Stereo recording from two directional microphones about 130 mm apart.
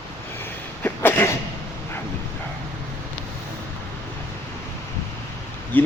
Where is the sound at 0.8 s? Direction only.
15° left (ahead or behind).